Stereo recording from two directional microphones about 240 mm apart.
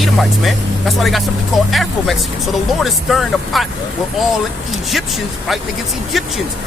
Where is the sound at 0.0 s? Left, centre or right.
Centre.